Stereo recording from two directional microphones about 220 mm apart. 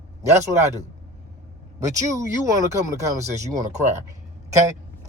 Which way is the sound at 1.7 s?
15° right (ahead or behind).